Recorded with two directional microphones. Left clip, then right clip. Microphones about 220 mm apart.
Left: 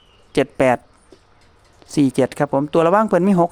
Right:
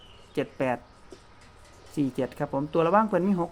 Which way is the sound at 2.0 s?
50° left (ahead or behind).